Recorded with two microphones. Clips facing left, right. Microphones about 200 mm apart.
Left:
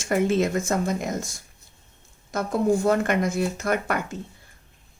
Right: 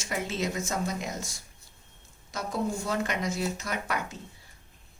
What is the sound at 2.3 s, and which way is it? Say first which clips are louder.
Speech: left 9 dB; 55° left (ahead or behind).